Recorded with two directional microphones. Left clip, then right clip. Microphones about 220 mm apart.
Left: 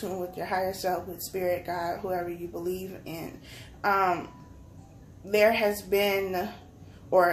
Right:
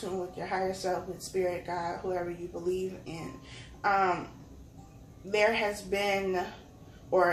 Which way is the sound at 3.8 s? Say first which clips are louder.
Left 2 dB; 50° left (ahead or behind).